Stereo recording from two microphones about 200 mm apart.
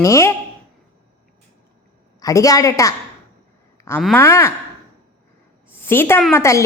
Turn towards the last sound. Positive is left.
turn(degrees=15)  # may be behind; listen again after turning